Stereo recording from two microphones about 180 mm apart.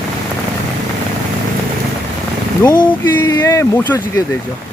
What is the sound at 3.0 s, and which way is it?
Speech, 15° left (ahead or behind).